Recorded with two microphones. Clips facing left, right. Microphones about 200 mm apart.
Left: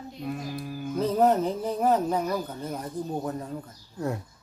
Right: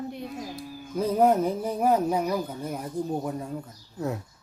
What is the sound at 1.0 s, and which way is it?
Speech, 10° right (ahead or behind).